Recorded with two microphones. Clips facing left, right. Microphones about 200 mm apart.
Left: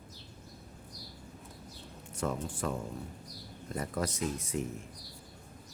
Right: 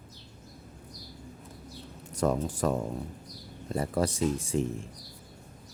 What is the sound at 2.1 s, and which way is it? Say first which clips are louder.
A man's voice: right 7 dB; 40° right (ahead or behind).